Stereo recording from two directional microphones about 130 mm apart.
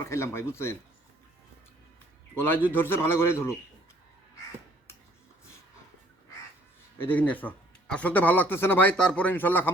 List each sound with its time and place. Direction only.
0.0 s speech: 20° left (ahead or behind)
2.3 s a man's voice: 15° left (ahead or behind)
7.0 s a man's voice: 15° left (ahead or behind)